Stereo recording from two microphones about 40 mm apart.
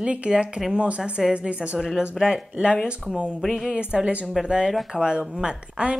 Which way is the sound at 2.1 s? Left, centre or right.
Centre.